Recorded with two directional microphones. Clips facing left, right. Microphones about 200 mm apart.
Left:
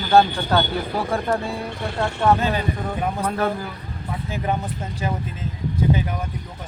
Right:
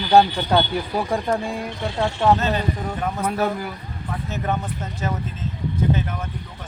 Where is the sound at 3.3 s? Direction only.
10° right (ahead or behind).